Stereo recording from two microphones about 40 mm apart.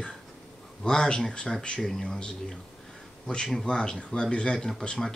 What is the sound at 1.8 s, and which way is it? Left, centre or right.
Speech, centre.